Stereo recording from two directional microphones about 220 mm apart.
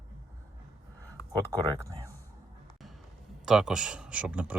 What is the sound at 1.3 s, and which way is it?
Speech, 20° right (ahead or behind).